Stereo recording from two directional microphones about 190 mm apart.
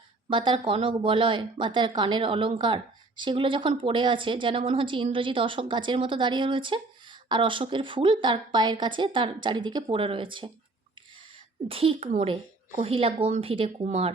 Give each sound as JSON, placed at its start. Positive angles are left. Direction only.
{"t": 0.3, "sound": "speech", "side_deg": -25}
{"t": 11.7, "sound": "speech", "side_deg": -30}